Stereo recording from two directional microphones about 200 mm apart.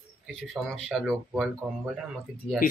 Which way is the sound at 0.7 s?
Centre (ahead or behind).